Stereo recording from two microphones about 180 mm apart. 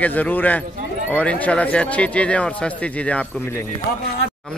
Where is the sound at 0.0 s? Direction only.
10° left (ahead or behind).